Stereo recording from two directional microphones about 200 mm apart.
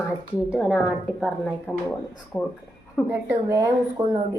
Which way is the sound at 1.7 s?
10° left (ahead or behind).